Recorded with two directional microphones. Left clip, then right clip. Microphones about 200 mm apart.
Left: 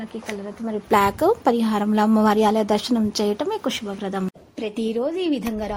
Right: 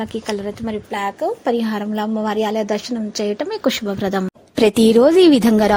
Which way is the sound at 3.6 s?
25° right (ahead or behind).